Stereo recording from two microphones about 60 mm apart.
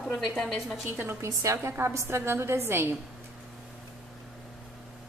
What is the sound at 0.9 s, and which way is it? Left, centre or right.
Speech, right.